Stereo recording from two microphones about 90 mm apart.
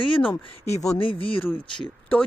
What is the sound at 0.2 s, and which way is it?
Speech, 20° left (ahead or behind).